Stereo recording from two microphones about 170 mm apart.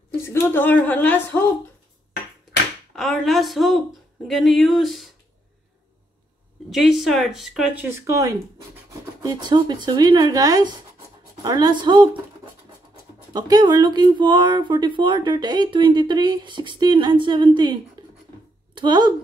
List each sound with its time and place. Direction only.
0.1 s a woman's voice: 15° left (ahead or behind)
3.0 s a sound: centre (ahead or behind)
4.3 s speech: centre (ahead or behind)
6.7 s speech: centre (ahead or behind); by 12.2 s 25° right (ahead or behind)
13.3 s speech: 25° right (ahead or behind)